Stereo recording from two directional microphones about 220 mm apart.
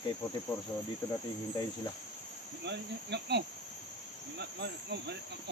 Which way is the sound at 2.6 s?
50° right (ahead or behind).